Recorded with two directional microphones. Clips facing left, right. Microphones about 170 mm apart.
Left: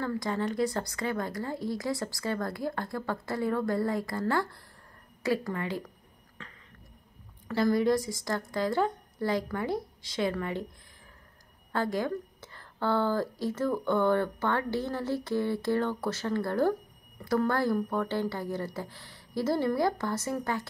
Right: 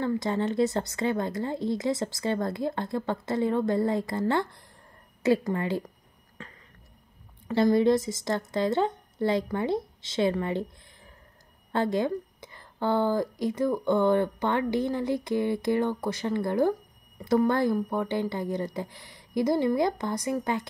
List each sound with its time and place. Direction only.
0.0 s a woman's voice: 25° right (ahead or behind)
7.4 s a woman's voice: 25° right (ahead or behind)
11.7 s a woman's voice: 25° right (ahead or behind)